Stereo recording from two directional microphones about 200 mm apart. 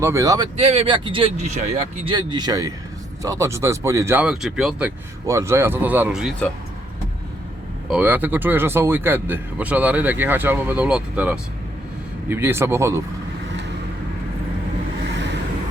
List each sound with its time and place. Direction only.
0.0 s speech: 15° right (ahead or behind)
0.5 s speech: 30° right (ahead or behind)
2.0 s speech: 20° right (ahead or behind); by 4.9 s centre (ahead or behind)
5.2 s speech: 15° right (ahead or behind)
7.9 s speech: 10° right (ahead or behind)
15.1 s vehicle: 60° right (ahead or behind)